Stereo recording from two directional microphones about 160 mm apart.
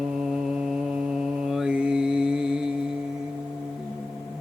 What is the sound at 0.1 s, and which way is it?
Mantra, 5° right (ahead or behind).